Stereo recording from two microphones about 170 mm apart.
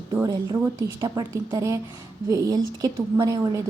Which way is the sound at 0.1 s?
25° right (ahead or behind).